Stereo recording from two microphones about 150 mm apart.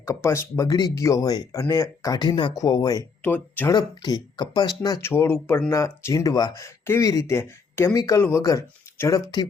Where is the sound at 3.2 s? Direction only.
10° left (ahead or behind).